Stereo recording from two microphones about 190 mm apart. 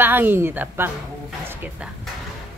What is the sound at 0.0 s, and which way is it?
Speech, 10° right (ahead or behind).